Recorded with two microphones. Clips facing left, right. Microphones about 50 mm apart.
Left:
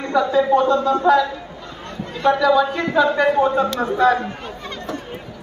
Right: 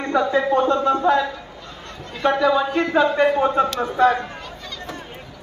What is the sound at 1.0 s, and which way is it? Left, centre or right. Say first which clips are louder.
Speech: left 5 dB; right.